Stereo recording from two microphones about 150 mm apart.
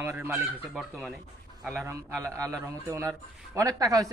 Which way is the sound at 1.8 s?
20° right (ahead or behind).